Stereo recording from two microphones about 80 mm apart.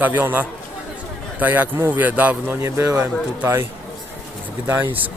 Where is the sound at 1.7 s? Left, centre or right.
Right.